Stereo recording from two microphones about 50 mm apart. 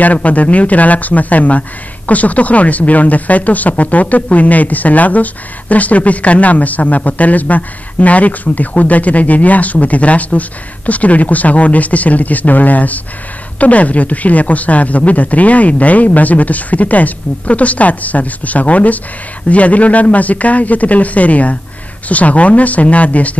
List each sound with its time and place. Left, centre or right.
0.0 s a man's voice: left